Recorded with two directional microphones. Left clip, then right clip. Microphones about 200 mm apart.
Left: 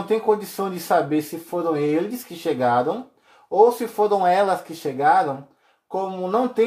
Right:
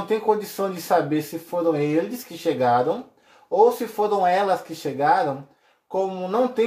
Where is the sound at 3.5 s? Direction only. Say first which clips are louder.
Left 2 dB; 30° left (ahead or behind).